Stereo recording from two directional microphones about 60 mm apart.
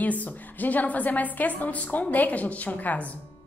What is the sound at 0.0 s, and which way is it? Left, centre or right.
A woman's voice, left.